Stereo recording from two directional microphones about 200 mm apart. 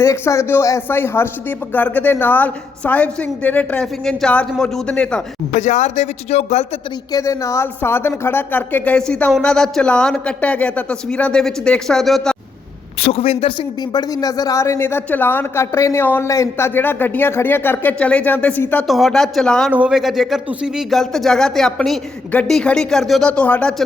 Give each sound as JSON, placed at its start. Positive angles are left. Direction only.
{"t": 0.0, "sound": "speech", "side_deg": 15}
{"t": 5.5, "sound": "speech", "side_deg": 35}
{"t": 7.1, "sound": "speech", "side_deg": 15}
{"t": 13.0, "sound": "speech", "side_deg": 30}